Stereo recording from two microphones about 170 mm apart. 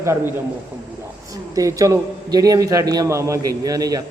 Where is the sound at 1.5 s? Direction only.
20° right (ahead or behind).